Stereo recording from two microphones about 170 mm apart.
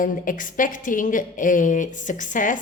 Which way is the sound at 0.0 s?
50° left (ahead or behind).